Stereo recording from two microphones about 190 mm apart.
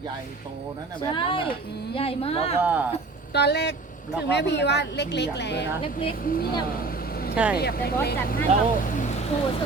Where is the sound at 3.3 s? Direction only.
60° left (ahead or behind).